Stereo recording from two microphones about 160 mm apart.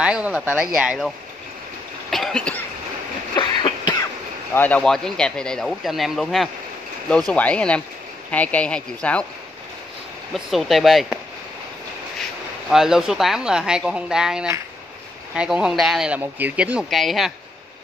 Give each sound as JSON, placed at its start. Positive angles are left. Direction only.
{"t": 0.0, "sound": "speech", "side_deg": -5}
{"t": 2.0, "sound": "cough", "side_deg": 0}
{"t": 3.3, "sound": "cough", "side_deg": 30}
{"t": 4.6, "sound": "speech", "side_deg": 10}
{"t": 10.3, "sound": "speech", "side_deg": 0}
{"t": 12.6, "sound": "speech", "side_deg": 0}